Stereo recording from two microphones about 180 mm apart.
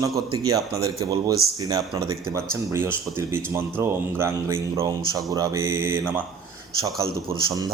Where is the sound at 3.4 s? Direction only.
5° left (ahead or behind).